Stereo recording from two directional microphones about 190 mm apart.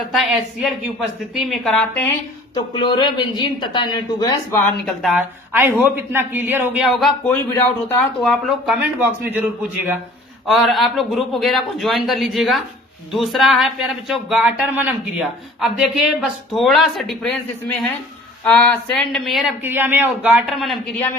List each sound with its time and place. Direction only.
0.0 s speech: centre (ahead or behind)
2.7 s a man's voice: 25° left (ahead or behind)
4.9 s a man's voice: centre (ahead or behind)
18.4 s a man's voice: 5° left (ahead or behind)